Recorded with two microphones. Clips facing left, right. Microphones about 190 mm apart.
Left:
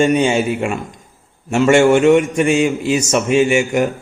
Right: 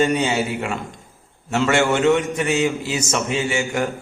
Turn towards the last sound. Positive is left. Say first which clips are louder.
# left 8 dB
turn(degrees=20)  # may be behind; listen again after turning